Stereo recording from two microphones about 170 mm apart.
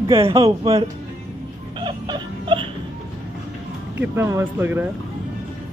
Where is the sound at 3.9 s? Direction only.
15° right (ahead or behind).